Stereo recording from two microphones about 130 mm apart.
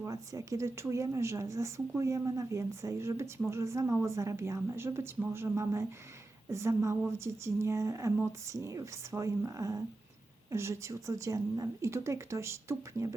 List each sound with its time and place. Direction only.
0.0 s a woman's voice: 25° right (ahead or behind)